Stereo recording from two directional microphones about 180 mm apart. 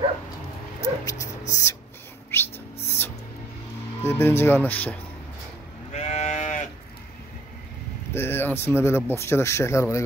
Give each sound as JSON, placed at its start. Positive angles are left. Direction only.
{"t": 1.5, "sound": "speech", "side_deg": 15}
{"t": 2.3, "sound": "a sound", "side_deg": 10}
{"t": 4.0, "sound": "speech", "side_deg": 15}
{"t": 5.9, "sound": "sheep", "side_deg": 40}
{"t": 8.1, "sound": "speech", "side_deg": 10}